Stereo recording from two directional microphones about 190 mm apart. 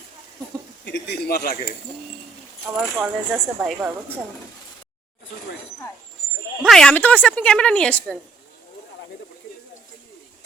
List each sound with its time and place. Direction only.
0.9 s speech: 60° left (ahead or behind)
2.6 s speech: 5° right (ahead or behind)
6.6 s speech: centre (ahead or behind)